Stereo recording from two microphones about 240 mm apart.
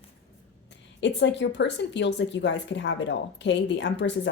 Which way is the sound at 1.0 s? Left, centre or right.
Left.